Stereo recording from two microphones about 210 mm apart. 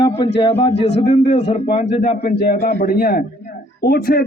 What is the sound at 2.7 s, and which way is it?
Speech, 45° left (ahead or behind).